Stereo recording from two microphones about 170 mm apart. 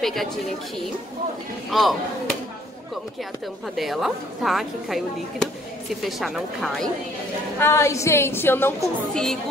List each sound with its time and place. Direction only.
0.0 s a woman's voice: centre (ahead or behind)
1.7 s speech: centre (ahead or behind)
3.7 s speech: centre (ahead or behind)
7.6 s a woman's voice: 15° left (ahead or behind)